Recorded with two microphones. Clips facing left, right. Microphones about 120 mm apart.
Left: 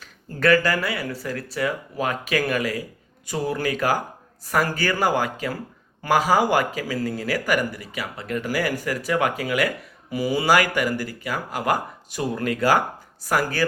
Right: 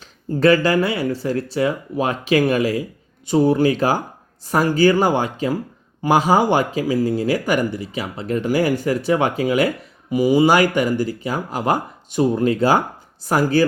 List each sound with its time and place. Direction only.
0.0 s speech: 25° right (ahead or behind)